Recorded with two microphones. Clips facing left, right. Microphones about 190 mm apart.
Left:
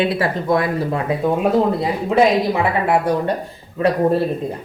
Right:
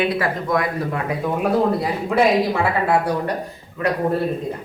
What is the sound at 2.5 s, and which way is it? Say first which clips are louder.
Speech: left 1 dB; 20° left (ahead or behind).